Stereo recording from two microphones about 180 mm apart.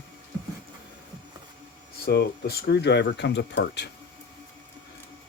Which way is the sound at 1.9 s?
60° left (ahead or behind).